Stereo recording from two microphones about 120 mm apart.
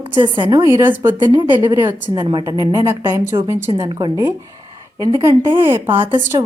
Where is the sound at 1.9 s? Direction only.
15° right (ahead or behind).